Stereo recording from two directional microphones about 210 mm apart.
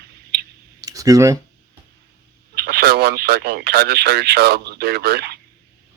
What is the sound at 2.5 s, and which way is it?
Speech, 45° right (ahead or behind).